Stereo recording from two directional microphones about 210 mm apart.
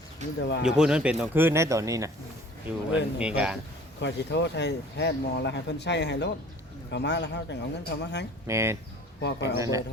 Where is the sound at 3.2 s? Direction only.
5° right (ahead or behind).